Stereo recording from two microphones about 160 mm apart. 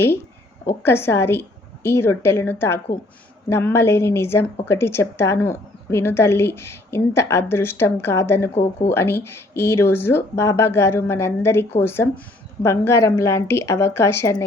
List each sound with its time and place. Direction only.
0.6 s a woman's voice: 15° left (ahead or behind)